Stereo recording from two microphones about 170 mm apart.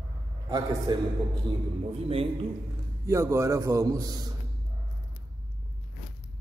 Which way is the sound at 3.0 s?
15° right (ahead or behind).